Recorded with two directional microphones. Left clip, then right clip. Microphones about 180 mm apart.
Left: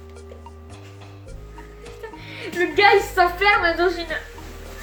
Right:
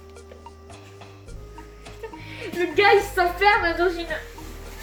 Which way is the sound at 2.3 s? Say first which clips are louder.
Left 2 dB; 10° left (ahead or behind).